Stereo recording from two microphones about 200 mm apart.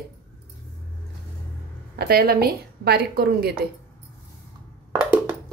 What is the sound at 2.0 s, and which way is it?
Speech, 50° right (ahead or behind).